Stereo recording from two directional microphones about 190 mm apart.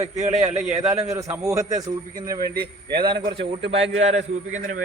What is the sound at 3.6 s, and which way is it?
A man's voice, 30° right (ahead or behind).